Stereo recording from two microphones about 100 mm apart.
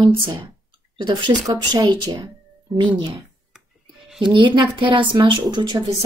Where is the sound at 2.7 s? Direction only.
50° right (ahead or behind).